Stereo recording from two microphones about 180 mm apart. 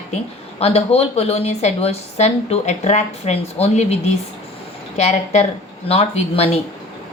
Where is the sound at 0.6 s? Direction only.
35° left (ahead or behind).